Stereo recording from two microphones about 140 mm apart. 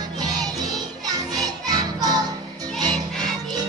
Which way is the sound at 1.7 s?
25° right (ahead or behind).